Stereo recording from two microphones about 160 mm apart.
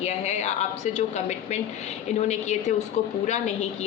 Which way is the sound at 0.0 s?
45° left (ahead or behind).